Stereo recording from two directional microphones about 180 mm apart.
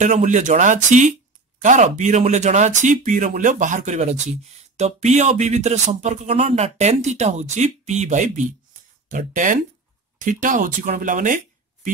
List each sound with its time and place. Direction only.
0.0 s speech: 40° right (ahead or behind)